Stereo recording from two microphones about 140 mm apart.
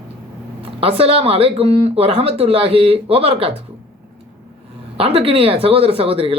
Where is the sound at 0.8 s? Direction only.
45° right (ahead or behind).